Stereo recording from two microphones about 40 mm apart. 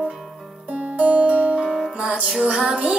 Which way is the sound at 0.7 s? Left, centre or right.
Right.